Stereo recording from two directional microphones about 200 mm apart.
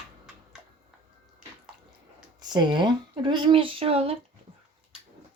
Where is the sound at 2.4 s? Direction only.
20° right (ahead or behind).